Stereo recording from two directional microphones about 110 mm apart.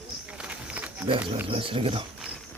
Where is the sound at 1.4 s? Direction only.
55° right (ahead or behind).